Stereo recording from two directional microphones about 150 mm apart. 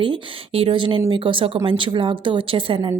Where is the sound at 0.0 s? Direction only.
35° right (ahead or behind).